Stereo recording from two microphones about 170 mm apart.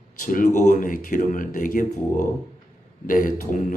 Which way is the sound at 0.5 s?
50° left (ahead or behind).